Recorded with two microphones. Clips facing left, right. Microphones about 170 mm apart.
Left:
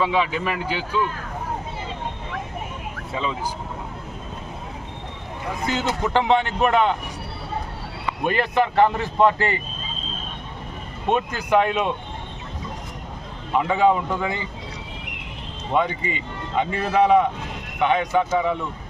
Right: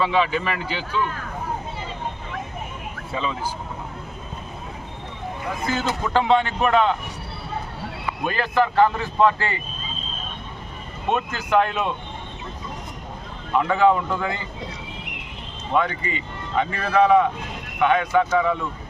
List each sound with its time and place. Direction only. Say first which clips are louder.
0.0 s a man's voice: right 1 dB; 10° left (ahead or behind)
5.6 s a man's voice: left 1 dB; 20° left (ahead or behind)
8.3 s a man's voice: even; 20° left (ahead or behind)
11.1 s a man's voice: left 1 dB; 15° left (ahead or behind)
13.6 s a man's voice: right 1 dB; 15° left (ahead or behind)
15.7 s a man's voice: even; 15° left (ahead or behind)